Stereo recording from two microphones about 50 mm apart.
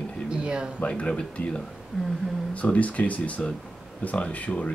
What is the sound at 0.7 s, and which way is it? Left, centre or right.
Speech, left.